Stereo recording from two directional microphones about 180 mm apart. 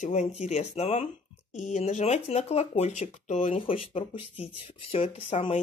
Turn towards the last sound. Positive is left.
turn(degrees=35)  # may be behind; listen again after turning